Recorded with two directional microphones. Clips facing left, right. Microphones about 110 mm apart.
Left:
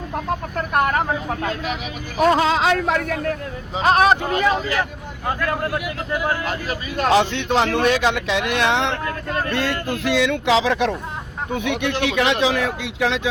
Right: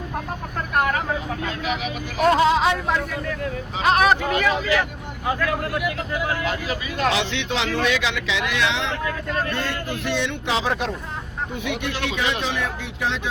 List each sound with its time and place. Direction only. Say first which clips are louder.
2.4 s speech: even; 90° left; by 3.3 s 65° left (ahead or behind)
3.8 s speech: left 2 dB; 35° left (ahead or behind)
6.2 s speech: even; 40° left (ahead or behind); by 10.9 s 90° left
11.5 s speech: left 6 dB; 60° left (ahead or behind); by 13.2 s 90° left